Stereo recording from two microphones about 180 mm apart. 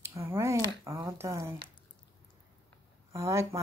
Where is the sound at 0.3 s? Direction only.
15° right (ahead or behind).